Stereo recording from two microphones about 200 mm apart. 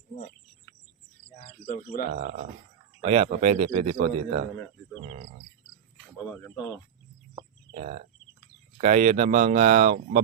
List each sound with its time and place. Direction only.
1.6 s speech: 40° left (ahead or behind)
2.0 s a man's voice: 40° right (ahead or behind)
3.0 s a man's voice: 30° right (ahead or behind)
5.0 s cricket: 45° right (ahead or behind)
7.7 s a sound: 35° right (ahead or behind)
8.8 s a man's voice: 35° right (ahead or behind)